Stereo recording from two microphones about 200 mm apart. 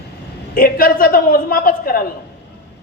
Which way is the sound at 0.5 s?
45° left (ahead or behind).